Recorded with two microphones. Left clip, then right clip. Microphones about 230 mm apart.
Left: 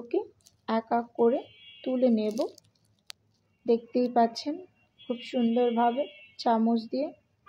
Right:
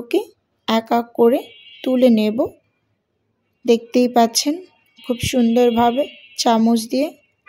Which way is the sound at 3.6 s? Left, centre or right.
Right.